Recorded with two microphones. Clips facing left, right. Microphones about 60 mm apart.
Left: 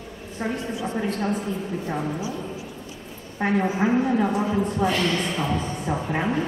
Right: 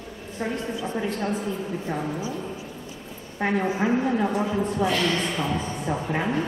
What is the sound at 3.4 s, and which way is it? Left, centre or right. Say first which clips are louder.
A woman's voice: left 2 dB; centre.